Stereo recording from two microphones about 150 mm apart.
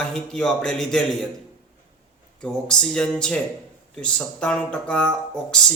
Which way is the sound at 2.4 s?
5° left (ahead or behind).